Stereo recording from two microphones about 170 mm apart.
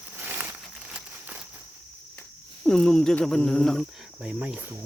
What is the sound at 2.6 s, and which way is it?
Speech, 5° left (ahead or behind).